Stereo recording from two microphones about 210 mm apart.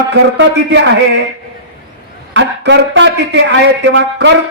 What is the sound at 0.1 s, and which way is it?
A man's voice, 55° right (ahead or behind).